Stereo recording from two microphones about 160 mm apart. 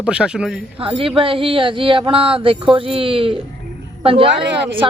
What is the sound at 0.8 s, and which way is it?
A woman's voice, 35° right (ahead or behind).